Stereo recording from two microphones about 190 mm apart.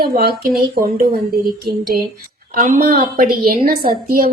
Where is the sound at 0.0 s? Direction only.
55° right (ahead or behind).